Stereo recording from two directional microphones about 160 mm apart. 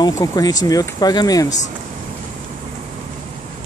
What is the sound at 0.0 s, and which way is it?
Speech, 25° left (ahead or behind).